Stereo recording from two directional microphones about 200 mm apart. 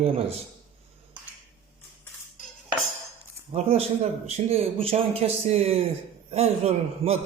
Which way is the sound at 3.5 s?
30° right (ahead or behind).